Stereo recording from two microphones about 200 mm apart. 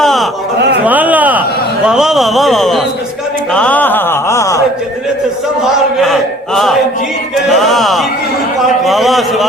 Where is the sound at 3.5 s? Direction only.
5° left (ahead or behind).